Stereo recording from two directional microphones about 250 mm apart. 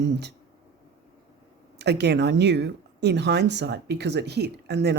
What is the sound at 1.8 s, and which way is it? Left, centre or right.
Speech, right.